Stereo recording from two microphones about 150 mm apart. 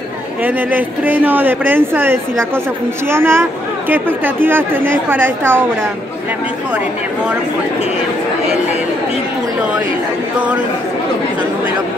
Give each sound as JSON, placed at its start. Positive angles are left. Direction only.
{"t": 0.4, "sound": "speech", "side_deg": -10}